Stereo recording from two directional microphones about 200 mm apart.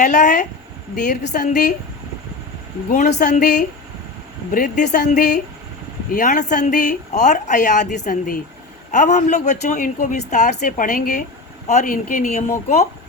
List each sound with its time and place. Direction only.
0.0 s a woman's voice: 35° left (ahead or behind)
2.9 s a woman's voice: 35° left (ahead or behind)